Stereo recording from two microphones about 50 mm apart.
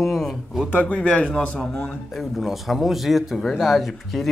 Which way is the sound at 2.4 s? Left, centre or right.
Centre.